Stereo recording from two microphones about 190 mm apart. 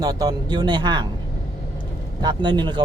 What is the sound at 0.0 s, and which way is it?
Speech, 20° right (ahead or behind).